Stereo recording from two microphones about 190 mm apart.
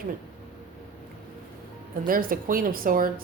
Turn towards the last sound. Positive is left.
turn(degrees=-50)  # may be behind; listen again after turning